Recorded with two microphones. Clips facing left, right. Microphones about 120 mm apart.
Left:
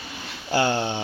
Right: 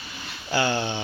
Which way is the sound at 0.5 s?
50° left (ahead or behind).